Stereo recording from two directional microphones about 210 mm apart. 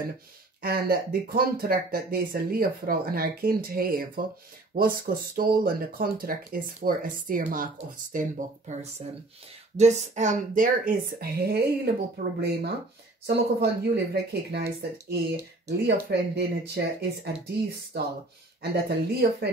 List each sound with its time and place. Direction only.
0.6 s speech: 45° right (ahead or behind)
9.8 s speech: 35° right (ahead or behind); by 19.5 s 50° right (ahead or behind)